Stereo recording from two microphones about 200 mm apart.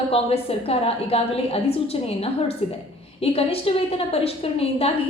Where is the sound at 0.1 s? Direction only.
30° left (ahead or behind).